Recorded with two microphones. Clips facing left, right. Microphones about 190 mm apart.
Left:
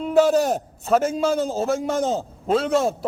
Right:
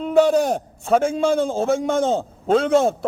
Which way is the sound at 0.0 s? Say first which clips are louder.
Right 1 dB; 5° left (ahead or behind).